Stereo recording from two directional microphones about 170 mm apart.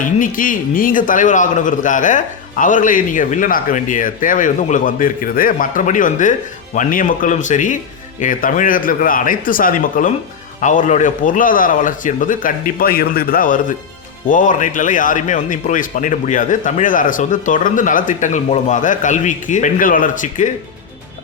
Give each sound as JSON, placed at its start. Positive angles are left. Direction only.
{"t": 0.0, "sound": "a man's voice", "side_deg": 50}